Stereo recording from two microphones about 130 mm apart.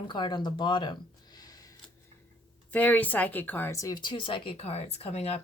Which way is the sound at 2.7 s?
10° left (ahead or behind).